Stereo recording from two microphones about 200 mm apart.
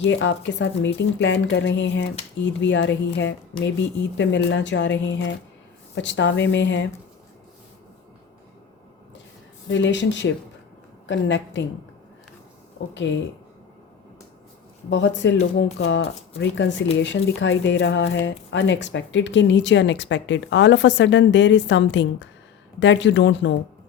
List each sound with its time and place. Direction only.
0.0 s speech: 65° left (ahead or behind)
9.6 s speech: 65° left (ahead or behind)
14.8 s speech: 65° left (ahead or behind)